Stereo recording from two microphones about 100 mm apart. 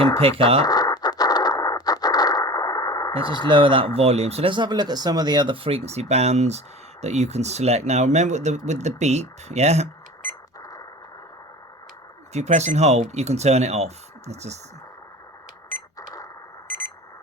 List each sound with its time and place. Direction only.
0.2 s speech: 70° right (ahead or behind)
0.6 s a sound: 40° left (ahead or behind)
3.2 s speech: 55° right (ahead or behind); by 4.5 s 90° right
4.5 s speech: 45° right (ahead or behind)
5.6 s speech: 85° right
10.6 s a sound: 35° left (ahead or behind)
12.3 s speech: 90° right
16.6 s alarm clock: 20° left (ahead or behind)